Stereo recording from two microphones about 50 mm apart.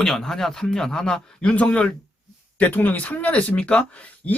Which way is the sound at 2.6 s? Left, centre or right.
Left.